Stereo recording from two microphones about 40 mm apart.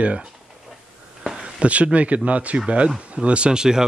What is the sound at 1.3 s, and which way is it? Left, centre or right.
Speech, right.